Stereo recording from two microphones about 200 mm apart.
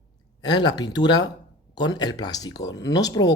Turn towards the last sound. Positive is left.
turn(degrees=20)  # may be behind; listen again after turning